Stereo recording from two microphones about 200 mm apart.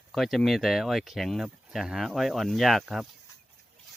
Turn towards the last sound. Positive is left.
turn(degrees=0)  # may be behind; listen again after turning